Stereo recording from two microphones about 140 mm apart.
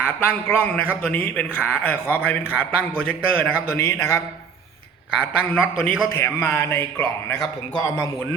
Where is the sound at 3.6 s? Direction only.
20° left (ahead or behind).